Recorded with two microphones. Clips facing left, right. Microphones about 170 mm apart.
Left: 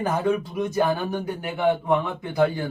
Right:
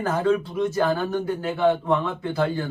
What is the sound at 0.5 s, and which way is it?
A man's voice, 15° left (ahead or behind).